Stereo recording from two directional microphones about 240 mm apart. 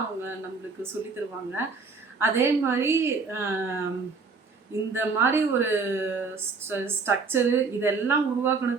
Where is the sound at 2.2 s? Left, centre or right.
Centre.